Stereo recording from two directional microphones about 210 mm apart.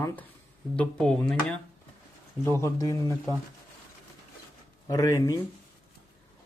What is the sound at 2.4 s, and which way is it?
Speech, 10° left (ahead or behind).